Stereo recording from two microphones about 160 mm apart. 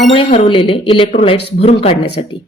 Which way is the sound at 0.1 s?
35° left (ahead or behind).